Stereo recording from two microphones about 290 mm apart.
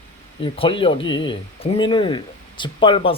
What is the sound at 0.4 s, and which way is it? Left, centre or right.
Speech, centre.